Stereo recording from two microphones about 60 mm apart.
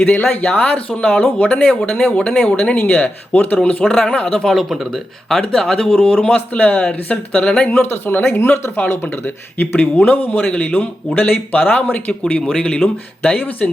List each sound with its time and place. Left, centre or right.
0.0 s a man's voice: left
4.7 s speech: centre
5.3 s a man's voice: centre; by 6.8 s left
7.3 s speech: centre
7.7 s a man's voice: left
12.2 s a man's voice: centre; by 13.7 s left